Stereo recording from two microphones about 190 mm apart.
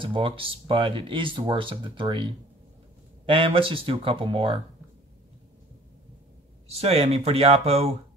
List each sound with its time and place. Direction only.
0.0 s speech: 25° right (ahead or behind)
6.7 s speech: 30° right (ahead or behind)